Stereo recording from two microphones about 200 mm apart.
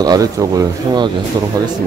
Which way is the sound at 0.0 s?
20° right (ahead or behind).